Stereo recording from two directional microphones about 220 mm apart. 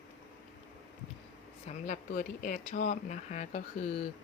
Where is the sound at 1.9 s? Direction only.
40° left (ahead or behind).